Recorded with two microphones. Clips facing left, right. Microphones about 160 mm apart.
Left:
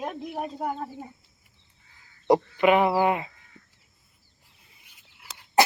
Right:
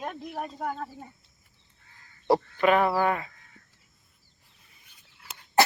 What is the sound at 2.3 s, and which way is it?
Speech, 15° left (ahead or behind).